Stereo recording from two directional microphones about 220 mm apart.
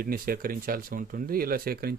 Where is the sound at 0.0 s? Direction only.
40° right (ahead or behind).